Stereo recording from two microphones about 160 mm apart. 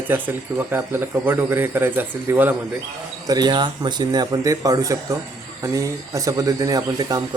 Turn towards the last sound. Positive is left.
turn(degrees=-25)  # may be behind; listen again after turning